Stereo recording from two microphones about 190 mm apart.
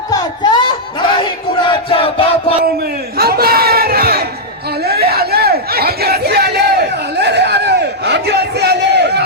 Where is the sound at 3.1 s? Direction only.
55° right (ahead or behind).